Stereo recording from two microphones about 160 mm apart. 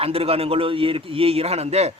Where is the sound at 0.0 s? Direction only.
35° right (ahead or behind).